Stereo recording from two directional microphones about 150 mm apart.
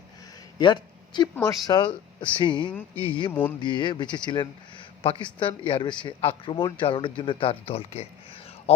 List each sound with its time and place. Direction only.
0.6 s speech: 30° left (ahead or behind)
2.7 s speech: 10° left (ahead or behind)
3.6 s speech: 30° left (ahead or behind)